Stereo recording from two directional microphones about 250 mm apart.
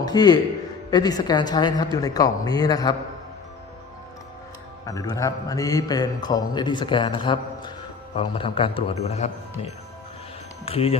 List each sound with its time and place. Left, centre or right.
0.0 s a man's voice: centre
4.9 s a man's voice: centre